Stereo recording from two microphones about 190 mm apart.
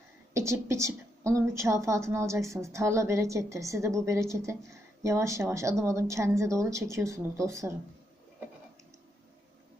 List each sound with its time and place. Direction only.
0.3 s a woman's voice: 15° right (ahead or behind)